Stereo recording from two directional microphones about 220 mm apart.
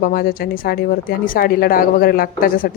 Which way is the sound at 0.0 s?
40° left (ahead or behind).